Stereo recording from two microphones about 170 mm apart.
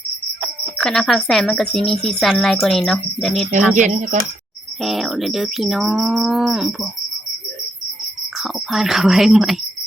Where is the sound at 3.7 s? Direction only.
45° right (ahead or behind).